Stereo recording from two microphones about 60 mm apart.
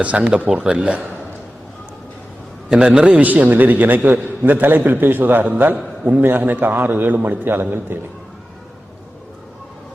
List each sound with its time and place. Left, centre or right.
0.0 s a man's voice: right
2.7 s a man's voice: centre; by 7.9 s right